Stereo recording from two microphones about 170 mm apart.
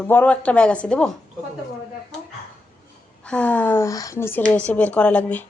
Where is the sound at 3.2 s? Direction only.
5° left (ahead or behind).